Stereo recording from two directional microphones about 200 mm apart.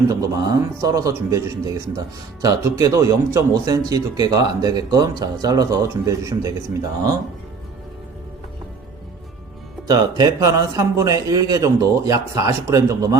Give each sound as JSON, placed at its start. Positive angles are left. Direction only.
{"t": 0.1, "sound": "speech", "side_deg": -15}
{"t": 9.8, "sound": "speech", "side_deg": -20}